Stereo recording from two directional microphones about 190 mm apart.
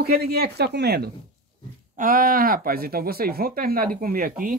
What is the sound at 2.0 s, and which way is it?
Speech, 45° right (ahead or behind).